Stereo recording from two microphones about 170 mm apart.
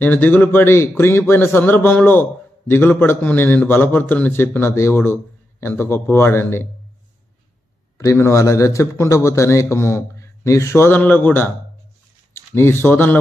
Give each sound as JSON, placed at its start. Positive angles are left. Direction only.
{"t": 0.0, "sound": "a man's voice", "side_deg": 10}
{"t": 8.0, "sound": "a man's voice", "side_deg": 15}